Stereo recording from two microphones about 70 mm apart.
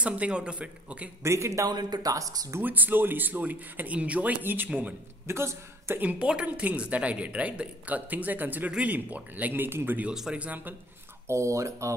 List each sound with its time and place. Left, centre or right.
0.0 s a woman's voice: centre
1.2 s speech: right
1.7 s speech: right
2.1 s speech: right
2.6 s a woman's voice: right
5.2 s speech: right
5.9 s a woman's voice: centre
11.2 s speech: right